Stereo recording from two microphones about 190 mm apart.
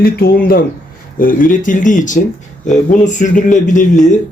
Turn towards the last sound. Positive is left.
turn(degrees=40)  # may be behind; listen again after turning